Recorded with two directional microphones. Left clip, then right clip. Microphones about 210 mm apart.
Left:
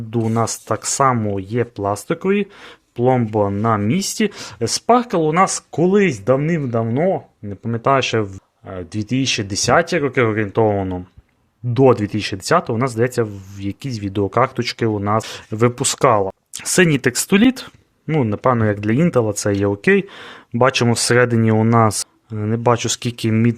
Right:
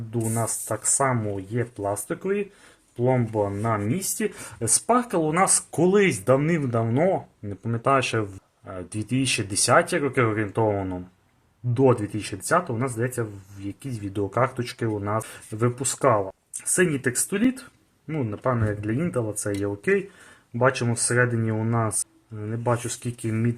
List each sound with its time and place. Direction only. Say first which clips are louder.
0.1 s speech: left 8 dB; 45° left (ahead or behind)